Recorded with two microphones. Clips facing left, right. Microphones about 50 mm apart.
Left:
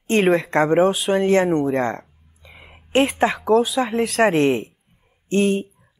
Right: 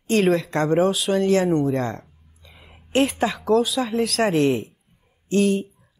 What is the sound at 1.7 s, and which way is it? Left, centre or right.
Speech, left.